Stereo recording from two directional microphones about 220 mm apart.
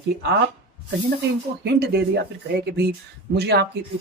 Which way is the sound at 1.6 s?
50° right (ahead or behind).